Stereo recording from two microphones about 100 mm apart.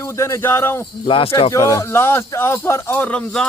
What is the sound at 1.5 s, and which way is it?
A man's voice, 35° left (ahead or behind).